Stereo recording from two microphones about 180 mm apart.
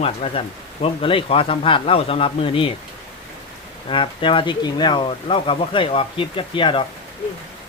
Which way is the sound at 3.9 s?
30° left (ahead or behind).